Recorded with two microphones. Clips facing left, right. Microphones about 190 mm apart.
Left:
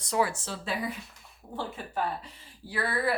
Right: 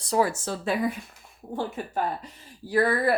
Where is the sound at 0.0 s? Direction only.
40° right (ahead or behind).